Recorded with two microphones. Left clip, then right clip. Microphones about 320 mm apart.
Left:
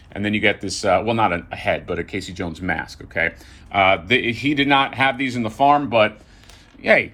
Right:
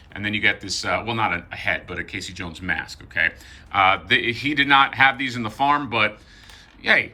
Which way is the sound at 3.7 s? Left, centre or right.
Right.